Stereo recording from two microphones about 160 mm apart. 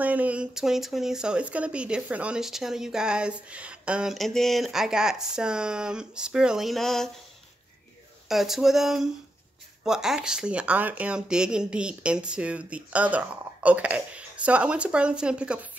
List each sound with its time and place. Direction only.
0.0 s speech: 10° right (ahead or behind)
8.3 s speech: centre (ahead or behind)